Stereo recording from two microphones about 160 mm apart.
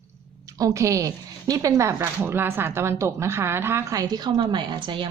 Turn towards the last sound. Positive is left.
turn(degrees=-30)  # may be behind; listen again after turning